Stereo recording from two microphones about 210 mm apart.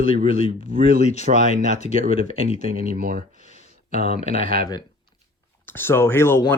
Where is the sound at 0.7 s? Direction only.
40° right (ahead or behind).